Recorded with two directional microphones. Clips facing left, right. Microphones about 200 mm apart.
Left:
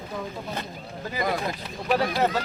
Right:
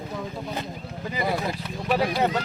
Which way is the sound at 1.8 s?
Centre (ahead or behind).